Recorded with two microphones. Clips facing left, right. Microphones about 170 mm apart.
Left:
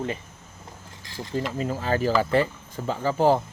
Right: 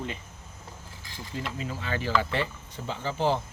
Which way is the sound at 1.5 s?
45° left (ahead or behind).